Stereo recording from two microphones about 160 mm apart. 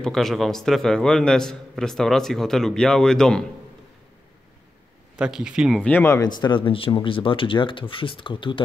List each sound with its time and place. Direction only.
0.0 s a man's voice: centre (ahead or behind)
5.1 s a man's voice: 5° right (ahead or behind)
5.8 s speech: 10° left (ahead or behind); by 8.6 s 30° left (ahead or behind)